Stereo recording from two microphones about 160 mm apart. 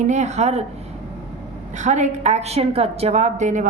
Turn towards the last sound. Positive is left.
turn(degrees=-50)  # may be behind; listen again after turning